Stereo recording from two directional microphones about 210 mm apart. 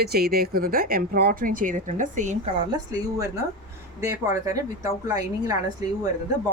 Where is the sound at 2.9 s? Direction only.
15° right (ahead or behind).